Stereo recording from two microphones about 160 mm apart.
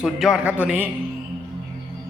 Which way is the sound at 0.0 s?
5° right (ahead or behind).